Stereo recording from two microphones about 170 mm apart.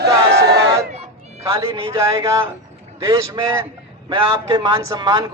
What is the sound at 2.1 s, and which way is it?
A man's voice, 20° right (ahead or behind).